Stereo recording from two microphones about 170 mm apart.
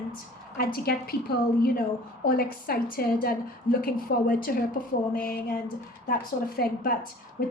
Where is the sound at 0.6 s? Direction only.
60° left (ahead or behind).